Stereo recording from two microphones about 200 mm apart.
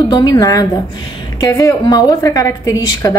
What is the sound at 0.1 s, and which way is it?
A woman's voice, 20° left (ahead or behind).